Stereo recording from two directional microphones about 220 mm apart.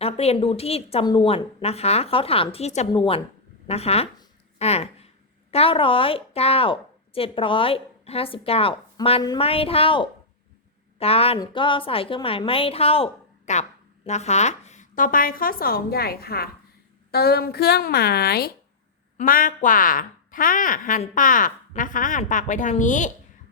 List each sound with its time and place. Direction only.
0.0 s a woman's voice: 25° left (ahead or behind)